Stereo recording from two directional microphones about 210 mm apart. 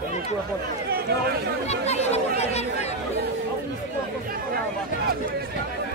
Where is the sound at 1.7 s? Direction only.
30° left (ahead or behind).